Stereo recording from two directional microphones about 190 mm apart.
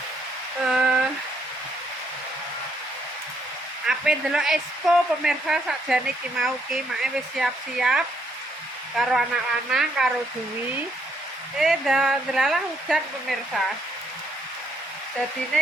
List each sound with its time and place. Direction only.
0.7 s a sound: 5° right (ahead or behind)
3.8 s speech: 5° right (ahead or behind)
11.5 s speech: centre (ahead or behind)